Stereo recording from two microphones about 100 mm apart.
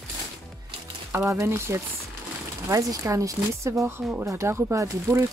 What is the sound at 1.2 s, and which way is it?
Speech, 30° right (ahead or behind).